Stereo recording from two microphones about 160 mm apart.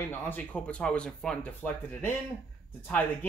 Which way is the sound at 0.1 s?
10° left (ahead or behind).